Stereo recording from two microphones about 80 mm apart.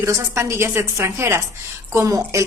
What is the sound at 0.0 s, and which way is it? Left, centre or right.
A woman's voice, right.